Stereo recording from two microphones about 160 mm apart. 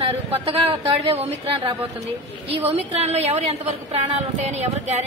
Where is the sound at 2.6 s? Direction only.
40° right (ahead or behind).